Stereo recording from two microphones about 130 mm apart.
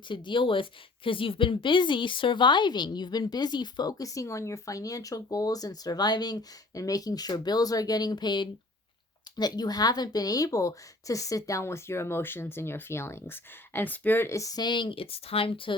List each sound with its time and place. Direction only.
0.1 s a woman's voice: 40° left (ahead or behind)